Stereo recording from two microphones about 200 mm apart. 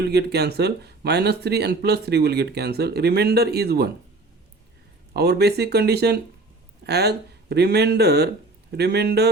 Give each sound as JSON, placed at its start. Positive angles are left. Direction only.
{"t": 0.1, "sound": "speech", "side_deg": -55}
{"t": 5.1, "sound": "a man's voice", "side_deg": -55}